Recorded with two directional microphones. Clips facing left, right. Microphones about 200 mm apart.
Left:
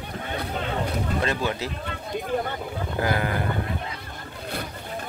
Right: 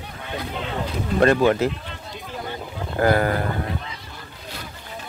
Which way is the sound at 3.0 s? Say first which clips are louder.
Right 7 dB; 45° right (ahead or behind).